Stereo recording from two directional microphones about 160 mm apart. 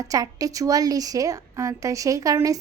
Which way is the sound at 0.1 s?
20° right (ahead or behind).